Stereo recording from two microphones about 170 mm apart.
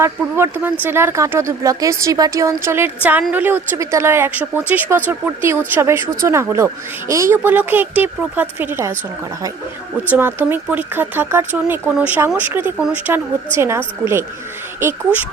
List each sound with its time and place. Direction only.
0.0 s speech: 15° right (ahead or behind)
10.1 s speech: 10° right (ahead or behind)